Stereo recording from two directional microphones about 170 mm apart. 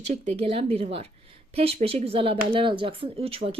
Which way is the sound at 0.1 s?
40° right (ahead or behind).